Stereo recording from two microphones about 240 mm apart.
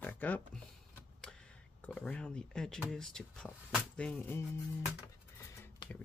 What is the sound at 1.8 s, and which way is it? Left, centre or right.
Speech, centre.